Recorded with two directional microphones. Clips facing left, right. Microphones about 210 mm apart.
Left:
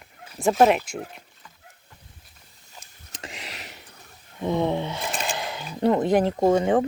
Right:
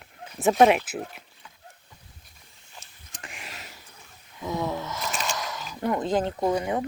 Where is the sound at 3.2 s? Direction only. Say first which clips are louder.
Left 5 dB; 20° left (ahead or behind).